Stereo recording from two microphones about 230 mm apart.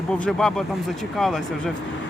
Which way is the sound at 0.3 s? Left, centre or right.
Centre.